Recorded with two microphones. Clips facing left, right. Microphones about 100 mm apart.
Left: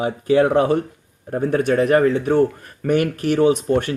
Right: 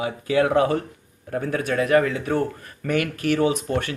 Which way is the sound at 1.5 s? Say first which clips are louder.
Left 4 dB; 40° left (ahead or behind).